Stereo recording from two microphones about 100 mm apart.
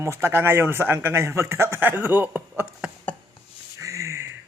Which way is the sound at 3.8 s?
30° right (ahead or behind).